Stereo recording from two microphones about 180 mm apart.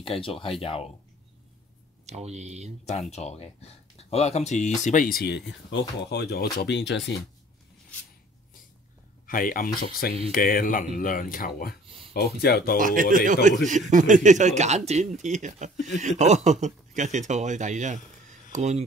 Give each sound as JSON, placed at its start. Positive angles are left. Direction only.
{"t": 0.0, "sound": "speech", "side_deg": 30}
{"t": 2.0, "sound": "speech", "side_deg": -40}
{"t": 2.8, "sound": "speech", "side_deg": 40}
{"t": 9.2, "sound": "speech", "side_deg": 50}
{"t": 12.1, "sound": "speech", "side_deg": 65}
{"t": 12.7, "sound": "speech", "side_deg": -50}